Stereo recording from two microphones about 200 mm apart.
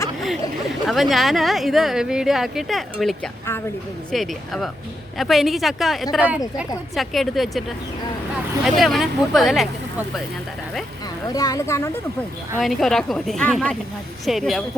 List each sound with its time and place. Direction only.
0.9 s speech: centre (ahead or behind)
8.6 s speech: centre (ahead or behind)
11.3 s speech: 15° left (ahead or behind)
12.5 s speech: centre (ahead or behind)